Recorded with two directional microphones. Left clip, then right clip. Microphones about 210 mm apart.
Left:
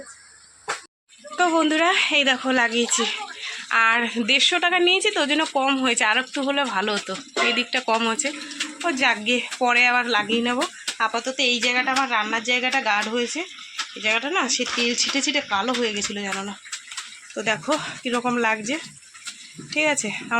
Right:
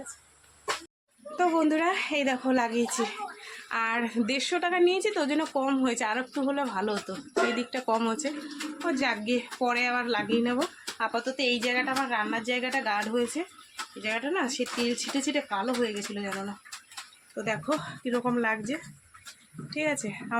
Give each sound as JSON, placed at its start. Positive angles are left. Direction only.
{"t": 1.4, "sound": "speech", "side_deg": 5}